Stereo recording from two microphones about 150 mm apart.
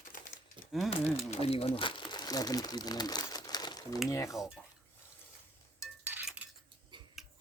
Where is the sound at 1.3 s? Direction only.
40° left (ahead or behind); by 4.4 s 20° left (ahead or behind).